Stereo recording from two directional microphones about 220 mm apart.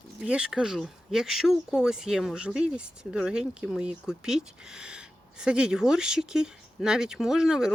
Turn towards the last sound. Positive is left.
turn(degrees=-5)  # may be behind; listen again after turning